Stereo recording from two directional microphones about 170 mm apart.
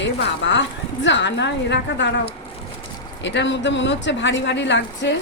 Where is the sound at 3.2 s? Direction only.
90° left.